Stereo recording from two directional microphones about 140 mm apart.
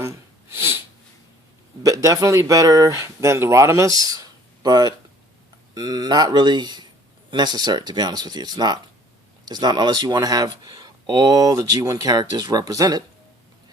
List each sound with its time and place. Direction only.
1.8 s speech: 25° right (ahead or behind)
4.1 s a sound: 25° right (ahead or behind)
5.7 s speech: 30° right (ahead or behind)